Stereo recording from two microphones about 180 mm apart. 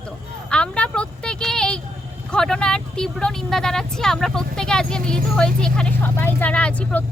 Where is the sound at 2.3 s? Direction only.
5° left (ahead or behind).